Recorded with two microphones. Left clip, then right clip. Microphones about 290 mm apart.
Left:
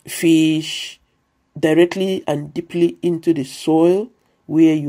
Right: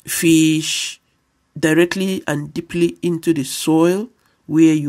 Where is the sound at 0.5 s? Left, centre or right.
Right.